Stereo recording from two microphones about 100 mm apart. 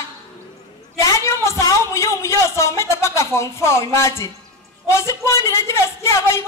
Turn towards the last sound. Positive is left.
turn(degrees=30)  # may be behind; listen again after turning